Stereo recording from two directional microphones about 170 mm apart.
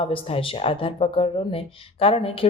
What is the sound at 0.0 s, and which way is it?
Speech, 35° left (ahead or behind).